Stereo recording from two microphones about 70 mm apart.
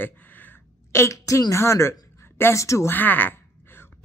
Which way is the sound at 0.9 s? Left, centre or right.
Left.